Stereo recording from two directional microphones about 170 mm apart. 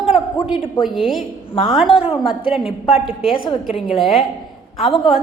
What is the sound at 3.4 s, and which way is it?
Speech, 30° left (ahead or behind).